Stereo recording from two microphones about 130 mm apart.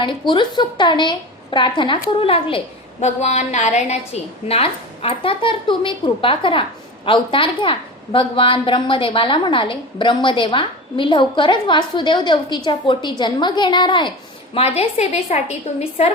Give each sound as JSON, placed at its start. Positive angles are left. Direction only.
{"t": 0.0, "sound": "a woman's voice", "side_deg": 40}
{"t": 3.0, "sound": "a woman's voice", "side_deg": 60}
{"t": 14.5, "sound": "a woman's voice", "side_deg": 45}